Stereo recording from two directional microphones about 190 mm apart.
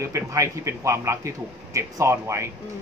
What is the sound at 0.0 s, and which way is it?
Speech, 15° right (ahead or behind).